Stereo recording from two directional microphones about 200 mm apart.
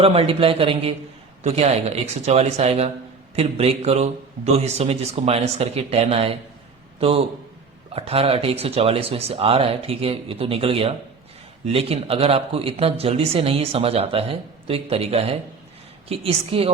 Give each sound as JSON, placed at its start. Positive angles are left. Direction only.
{"t": 0.0, "sound": "a man's voice", "side_deg": -30}